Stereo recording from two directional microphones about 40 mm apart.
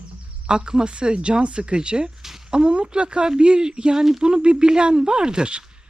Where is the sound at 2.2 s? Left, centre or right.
Centre.